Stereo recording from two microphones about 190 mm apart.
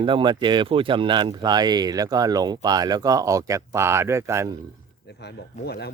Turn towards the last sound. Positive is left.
turn(degrees=60)  # may be behind; listen again after turning